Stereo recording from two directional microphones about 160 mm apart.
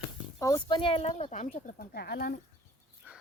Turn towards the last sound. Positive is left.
turn(degrees=-10)  # may be behind; listen again after turning